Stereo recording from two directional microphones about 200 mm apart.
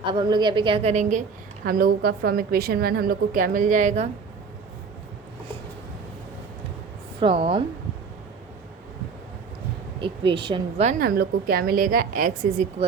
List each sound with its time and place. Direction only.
0.1 s a woman's voice: 25° right (ahead or behind)
1.6 s a woman's voice: 45° right (ahead or behind)
7.2 s a woman's voice: 25° right (ahead or behind)
10.0 s a woman's voice: 25° right (ahead or behind)
11.0 s a woman's voice: 50° right (ahead or behind)